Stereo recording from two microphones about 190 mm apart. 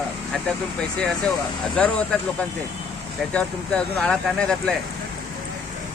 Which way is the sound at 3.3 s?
5° left (ahead or behind).